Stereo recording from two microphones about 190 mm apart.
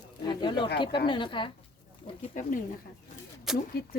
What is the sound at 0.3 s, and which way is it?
Speech, 25° left (ahead or behind).